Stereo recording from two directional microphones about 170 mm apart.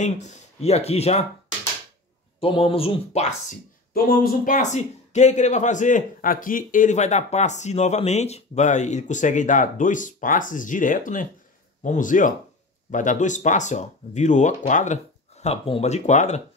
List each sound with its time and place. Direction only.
0.0 s speech: 45° left (ahead or behind)
2.4 s speech: 35° left (ahead or behind)
3.9 s speech: 60° left (ahead or behind); by 16.4 s 45° left (ahead or behind)